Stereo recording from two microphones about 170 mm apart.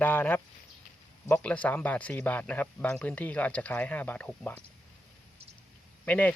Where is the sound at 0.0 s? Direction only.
10° left (ahead or behind).